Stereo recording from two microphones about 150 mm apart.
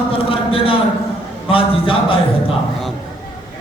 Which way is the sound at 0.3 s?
35° left (ahead or behind).